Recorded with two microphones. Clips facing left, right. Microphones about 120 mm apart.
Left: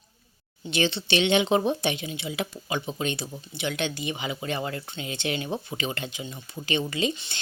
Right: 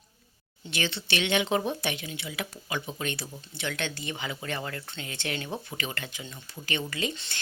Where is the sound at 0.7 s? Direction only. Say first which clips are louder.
Left 6 dB; 25° left (ahead or behind).